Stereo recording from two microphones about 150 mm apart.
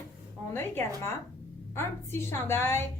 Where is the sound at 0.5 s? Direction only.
15° left (ahead or behind).